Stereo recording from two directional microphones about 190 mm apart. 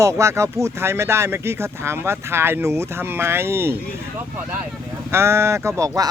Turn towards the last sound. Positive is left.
turn(degrees=-15)  # may be behind; listen again after turning